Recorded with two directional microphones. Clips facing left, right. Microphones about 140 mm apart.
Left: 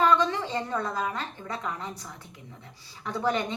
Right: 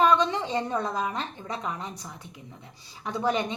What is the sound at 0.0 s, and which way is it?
A woman's voice, 15° right (ahead or behind).